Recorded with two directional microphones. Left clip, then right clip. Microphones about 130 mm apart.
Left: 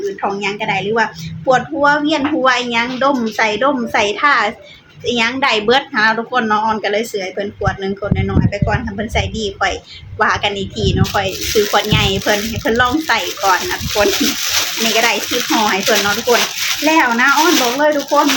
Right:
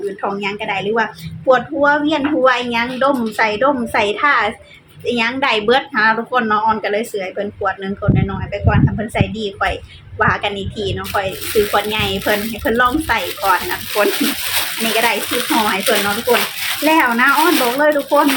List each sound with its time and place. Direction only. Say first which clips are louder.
0.2 s speech: left 2 dB; 5° left (ahead or behind)
13.9 s speech: left 2 dB; centre (ahead or behind)